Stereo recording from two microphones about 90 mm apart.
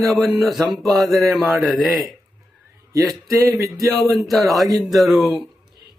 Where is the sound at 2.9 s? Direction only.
35° right (ahead or behind).